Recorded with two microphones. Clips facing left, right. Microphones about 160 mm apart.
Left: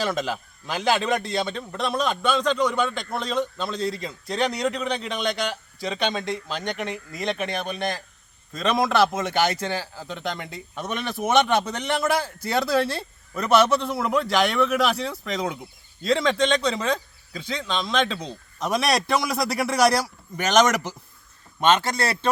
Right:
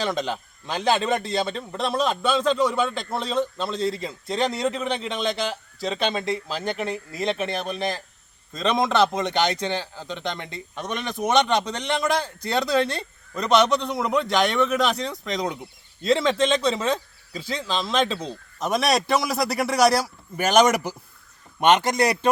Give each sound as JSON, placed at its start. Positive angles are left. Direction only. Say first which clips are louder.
{"t": 0.0, "sound": "a man's voice", "louder": "even", "side_deg": 0}
{"t": 6.7, "sound": "speech", "louder": "right 2 dB", "side_deg": -30}
{"t": 7.1, "sound": "a man's voice", "louder": "right 1 dB", "side_deg": 0}